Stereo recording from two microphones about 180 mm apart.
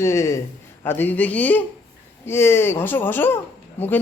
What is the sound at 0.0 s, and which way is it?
A man's voice, 15° left (ahead or behind).